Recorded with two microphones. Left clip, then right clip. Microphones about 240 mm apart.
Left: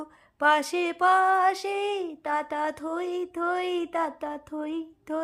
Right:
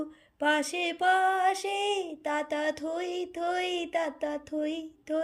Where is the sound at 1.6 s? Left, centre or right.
Left.